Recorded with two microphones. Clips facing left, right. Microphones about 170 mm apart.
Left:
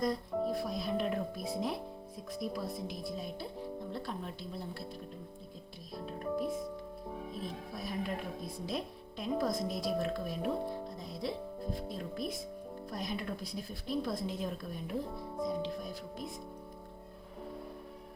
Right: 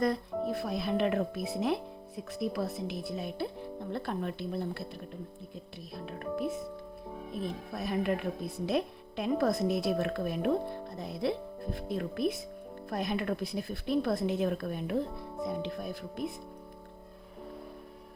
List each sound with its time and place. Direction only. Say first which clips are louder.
0.5 s music: right 3 dB; 70° right (ahead or behind)
1.5 s speech: right 7 dB; 70° right (ahead or behind)
6.2 s speech: right 1 dB; centre (ahead or behind)
7.4 s speech: right 5 dB; 65° right (ahead or behind)